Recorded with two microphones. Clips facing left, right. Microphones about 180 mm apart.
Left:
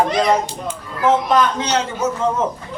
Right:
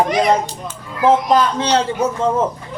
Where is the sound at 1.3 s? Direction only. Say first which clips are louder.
Right 2 dB; 30° right (ahead or behind).